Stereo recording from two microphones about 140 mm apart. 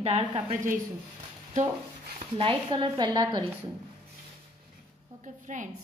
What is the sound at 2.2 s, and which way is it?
A woman's voice, 40° right (ahead or behind).